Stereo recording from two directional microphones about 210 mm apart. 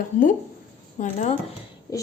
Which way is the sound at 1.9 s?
15° left (ahead or behind).